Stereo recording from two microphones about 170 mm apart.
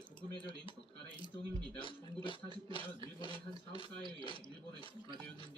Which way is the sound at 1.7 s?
30° left (ahead or behind).